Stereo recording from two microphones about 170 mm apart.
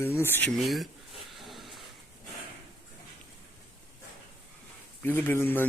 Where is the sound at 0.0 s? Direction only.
15° left (ahead or behind).